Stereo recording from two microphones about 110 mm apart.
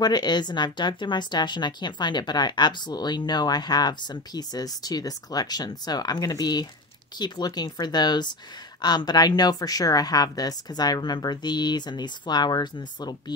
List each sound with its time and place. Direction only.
0.0 s speech: 40° left (ahead or behind)